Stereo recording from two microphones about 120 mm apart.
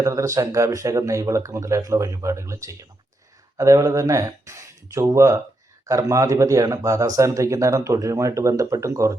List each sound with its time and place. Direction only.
0.0 s speech: 25° right (ahead or behind)